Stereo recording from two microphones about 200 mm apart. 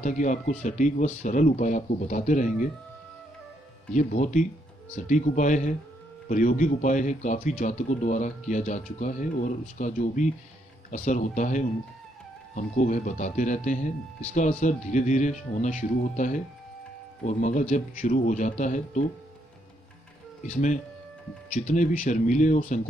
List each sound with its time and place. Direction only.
0.0 s speech: 40° left (ahead or behind)
3.9 s speech: 40° left (ahead or behind)
21.5 s speech: 40° left (ahead or behind)